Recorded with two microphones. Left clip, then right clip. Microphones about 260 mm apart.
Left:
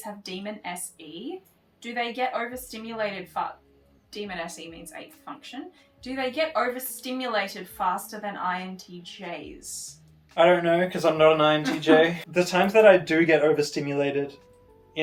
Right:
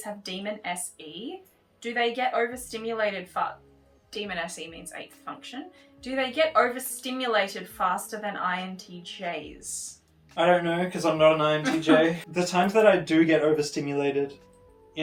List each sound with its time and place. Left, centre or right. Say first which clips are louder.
0.0 s a woman's voice: right 2 dB; centre
10.3 s speech: left 3 dB; centre